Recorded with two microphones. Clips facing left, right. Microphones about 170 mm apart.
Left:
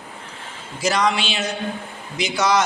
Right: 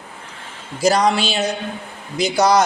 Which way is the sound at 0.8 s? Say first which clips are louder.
Right 5 dB; 35° right (ahead or behind).